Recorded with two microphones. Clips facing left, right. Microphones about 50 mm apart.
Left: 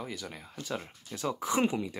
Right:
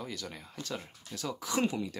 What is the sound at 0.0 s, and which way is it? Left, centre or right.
Speech, centre.